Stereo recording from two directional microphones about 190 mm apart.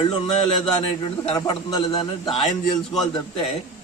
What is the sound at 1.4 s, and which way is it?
Speech, 25° left (ahead or behind).